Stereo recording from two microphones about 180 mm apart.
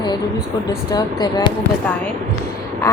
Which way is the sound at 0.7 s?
20° left (ahead or behind).